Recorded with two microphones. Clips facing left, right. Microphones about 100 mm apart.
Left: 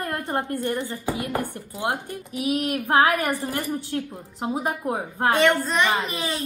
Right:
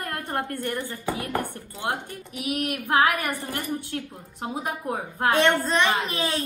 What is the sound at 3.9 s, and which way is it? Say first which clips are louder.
Speech: left 4 dB; 30° left (ahead or behind).